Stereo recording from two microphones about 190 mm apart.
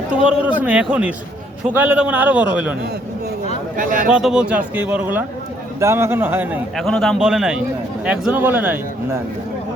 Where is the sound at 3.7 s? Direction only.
45° right (ahead or behind).